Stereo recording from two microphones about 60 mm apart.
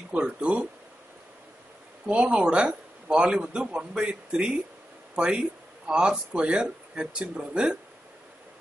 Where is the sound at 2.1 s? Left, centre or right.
Right.